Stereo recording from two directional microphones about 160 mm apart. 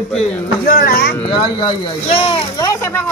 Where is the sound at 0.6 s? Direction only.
70° left (ahead or behind).